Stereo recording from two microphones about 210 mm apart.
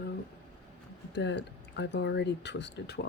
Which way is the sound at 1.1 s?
55° left (ahead or behind).